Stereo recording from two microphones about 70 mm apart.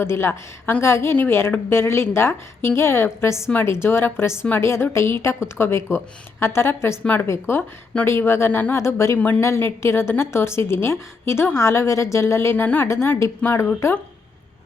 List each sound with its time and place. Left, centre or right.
0.0 s a woman's voice: left
9.1 s speech: left
9.4 s a woman's voice: left
12.6 s a woman's voice: left